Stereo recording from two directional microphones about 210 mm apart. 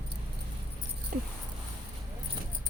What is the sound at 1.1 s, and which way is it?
Dog, 40° right (ahead or behind).